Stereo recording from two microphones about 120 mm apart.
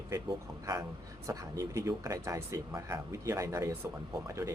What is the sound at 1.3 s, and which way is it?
Speech, 25° right (ahead or behind).